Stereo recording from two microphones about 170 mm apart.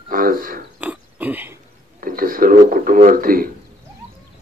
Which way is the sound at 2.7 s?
55° right (ahead or behind).